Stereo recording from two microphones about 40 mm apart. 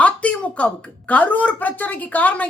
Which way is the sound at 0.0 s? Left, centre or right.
Left.